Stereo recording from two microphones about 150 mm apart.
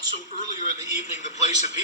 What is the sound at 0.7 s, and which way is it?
Television, 55° left (ahead or behind).